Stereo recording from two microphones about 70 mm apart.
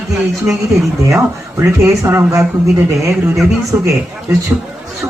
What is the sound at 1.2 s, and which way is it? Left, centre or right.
Speech, right.